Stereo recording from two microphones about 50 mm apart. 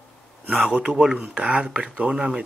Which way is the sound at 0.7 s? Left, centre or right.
Right.